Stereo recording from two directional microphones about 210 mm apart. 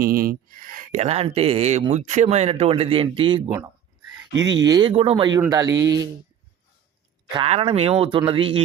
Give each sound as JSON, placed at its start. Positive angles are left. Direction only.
{"t": 0.0, "sound": "speech", "side_deg": -45}
{"t": 4.3, "sound": "speech", "side_deg": -60}
{"t": 4.5, "sound": "speech", "side_deg": -20}
{"t": 7.3, "sound": "speech", "side_deg": -25}